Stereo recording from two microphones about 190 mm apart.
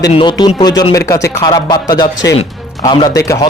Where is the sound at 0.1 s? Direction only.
25° left (ahead or behind).